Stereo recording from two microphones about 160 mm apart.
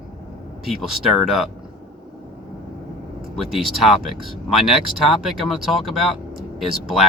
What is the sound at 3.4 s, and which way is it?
Speech, centre (ahead or behind).